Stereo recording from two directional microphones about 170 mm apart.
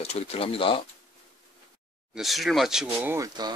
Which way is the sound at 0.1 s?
35° left (ahead or behind).